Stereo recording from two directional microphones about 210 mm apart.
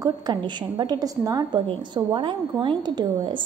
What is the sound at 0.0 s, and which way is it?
A woman's voice, 20° right (ahead or behind).